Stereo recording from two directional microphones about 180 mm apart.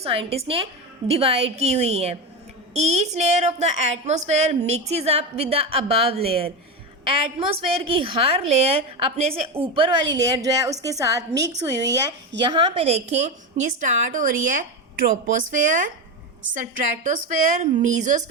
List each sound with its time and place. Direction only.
0.0 s a woman's voice: 35° right (ahead or behind)
13.8 s a woman's voice: 50° right (ahead or behind)